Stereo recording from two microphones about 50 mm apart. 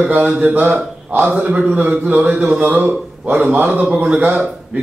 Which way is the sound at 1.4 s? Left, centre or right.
Right.